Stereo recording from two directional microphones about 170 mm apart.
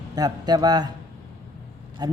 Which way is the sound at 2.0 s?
25° right (ahead or behind).